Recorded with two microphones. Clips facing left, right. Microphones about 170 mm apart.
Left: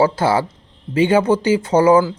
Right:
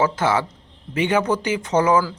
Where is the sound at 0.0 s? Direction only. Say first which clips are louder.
Left 4 dB; 30° left (ahead or behind).